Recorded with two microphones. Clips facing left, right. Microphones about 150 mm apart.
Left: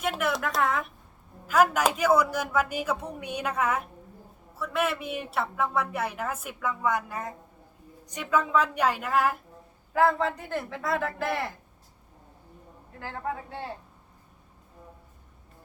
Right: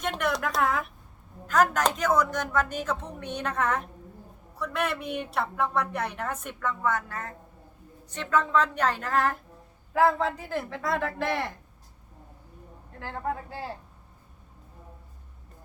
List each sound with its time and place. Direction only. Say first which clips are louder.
0.0 s a woman's voice: even; 5° left (ahead or behind)
12.9 s a woman's voice: right 1 dB; centre (ahead or behind)